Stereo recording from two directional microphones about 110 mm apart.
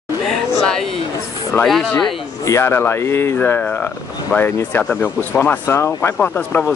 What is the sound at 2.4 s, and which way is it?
Speech, 25° left (ahead or behind).